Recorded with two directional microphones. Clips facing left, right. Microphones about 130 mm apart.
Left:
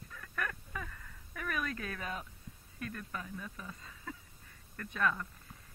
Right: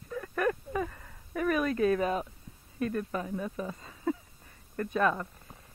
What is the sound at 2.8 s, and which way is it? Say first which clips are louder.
Speech: right 11 dB; 30° right (ahead or behind).